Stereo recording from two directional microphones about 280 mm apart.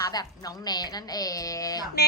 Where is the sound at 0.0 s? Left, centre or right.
Centre.